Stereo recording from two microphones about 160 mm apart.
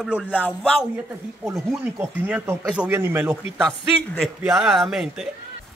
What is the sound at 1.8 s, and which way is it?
Speech, 10° right (ahead or behind).